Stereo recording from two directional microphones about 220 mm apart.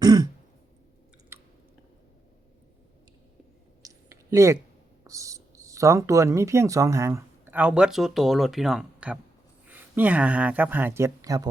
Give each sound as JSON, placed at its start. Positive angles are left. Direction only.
{"t": 0.0, "sound": "throat clearing", "side_deg": -20}
{"t": 1.3, "sound": "chewing", "side_deg": -10}
{"t": 3.8, "sound": "a sound", "side_deg": -15}
{"t": 5.0, "sound": "speech", "side_deg": -15}